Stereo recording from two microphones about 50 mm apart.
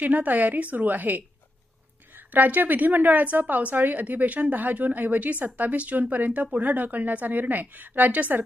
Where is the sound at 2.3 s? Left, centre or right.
Right.